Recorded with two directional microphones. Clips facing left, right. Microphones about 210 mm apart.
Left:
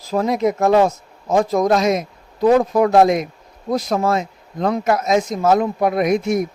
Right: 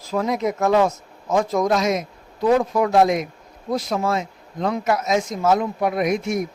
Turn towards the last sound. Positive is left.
turn(degrees=40)  # may be behind; listen again after turning